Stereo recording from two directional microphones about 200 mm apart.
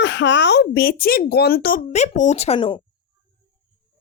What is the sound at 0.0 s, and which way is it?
Speech, 65° left (ahead or behind).